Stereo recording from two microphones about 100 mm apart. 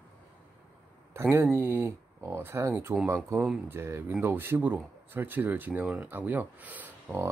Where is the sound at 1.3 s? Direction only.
20° right (ahead or behind).